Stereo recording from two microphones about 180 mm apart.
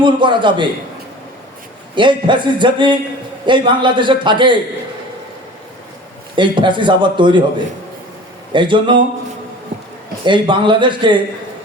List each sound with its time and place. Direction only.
0.0 s a man's voice: 25° right (ahead or behind)
2.0 s a man's voice: 25° right (ahead or behind)
6.3 s a man's voice: 25° right (ahead or behind)
8.5 s a man's voice: 25° right (ahead or behind)
10.2 s a man's voice: 25° right (ahead or behind)